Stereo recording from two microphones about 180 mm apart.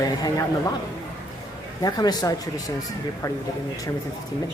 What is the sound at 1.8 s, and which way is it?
Speech, 20° left (ahead or behind).